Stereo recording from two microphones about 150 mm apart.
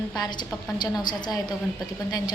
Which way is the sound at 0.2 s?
30° left (ahead or behind).